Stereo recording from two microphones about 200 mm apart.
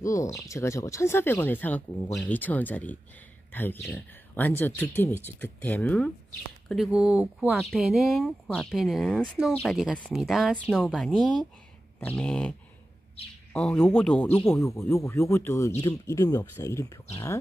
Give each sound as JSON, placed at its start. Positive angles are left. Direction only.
{"t": 0.0, "sound": "speech", "side_deg": 15}